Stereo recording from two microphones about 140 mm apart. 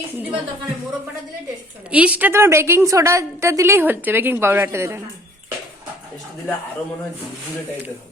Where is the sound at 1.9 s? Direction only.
10° right (ahead or behind).